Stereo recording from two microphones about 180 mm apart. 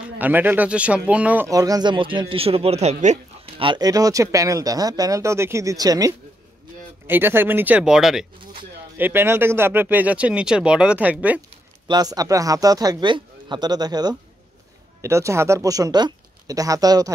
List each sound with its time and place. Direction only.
0.2 s speech: 10° right (ahead or behind); by 3.6 s 40° right (ahead or behind)
3.6 s speech: 20° right (ahead or behind)
11.9 s speech: 20° right (ahead or behind)